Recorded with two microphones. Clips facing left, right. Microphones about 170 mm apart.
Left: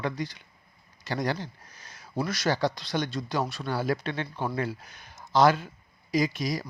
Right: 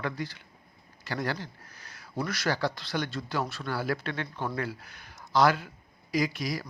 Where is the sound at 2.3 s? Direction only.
20° left (ahead or behind).